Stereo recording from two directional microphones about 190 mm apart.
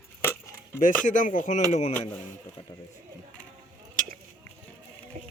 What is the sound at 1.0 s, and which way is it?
Speech, 45° left (ahead or behind).